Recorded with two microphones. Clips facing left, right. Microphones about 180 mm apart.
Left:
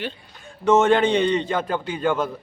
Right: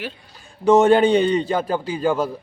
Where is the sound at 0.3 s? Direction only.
35° right (ahead or behind).